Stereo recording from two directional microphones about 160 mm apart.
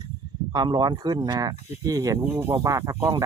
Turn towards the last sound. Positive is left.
turn(degrees=-20)  # may be behind; listen again after turning